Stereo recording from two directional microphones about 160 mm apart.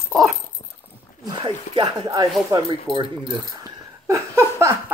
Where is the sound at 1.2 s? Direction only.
30° right (ahead or behind).